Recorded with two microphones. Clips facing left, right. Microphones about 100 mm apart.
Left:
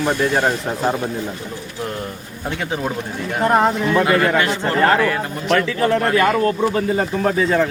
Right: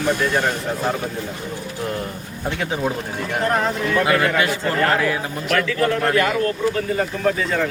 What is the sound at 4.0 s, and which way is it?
Speech, centre (ahead or behind).